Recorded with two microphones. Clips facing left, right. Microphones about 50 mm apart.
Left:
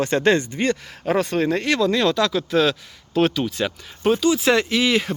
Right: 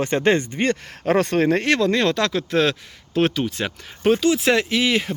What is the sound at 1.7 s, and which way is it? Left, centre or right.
Speech, right.